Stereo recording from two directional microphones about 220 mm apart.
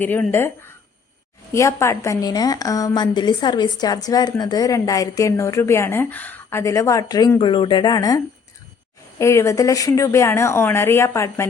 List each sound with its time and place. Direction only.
0.0 s a woman's voice: 10° left (ahead or behind)
1.5 s a woman's voice: 15° left (ahead or behind)